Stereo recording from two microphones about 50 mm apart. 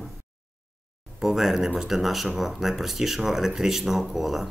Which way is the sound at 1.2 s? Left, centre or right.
Centre.